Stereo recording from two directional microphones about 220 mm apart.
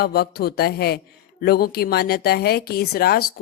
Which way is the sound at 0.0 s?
45° left (ahead or behind).